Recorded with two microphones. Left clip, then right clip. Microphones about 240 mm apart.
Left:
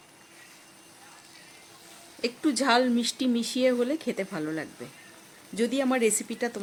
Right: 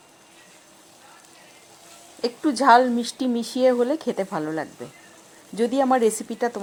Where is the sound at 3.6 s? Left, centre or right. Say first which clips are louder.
Right 6 dB; centre.